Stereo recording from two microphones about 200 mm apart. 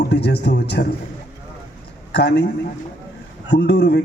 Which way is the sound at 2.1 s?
55° left (ahead or behind).